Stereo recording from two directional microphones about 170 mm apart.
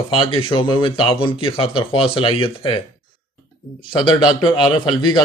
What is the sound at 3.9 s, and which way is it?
A man's voice, 25° left (ahead or behind).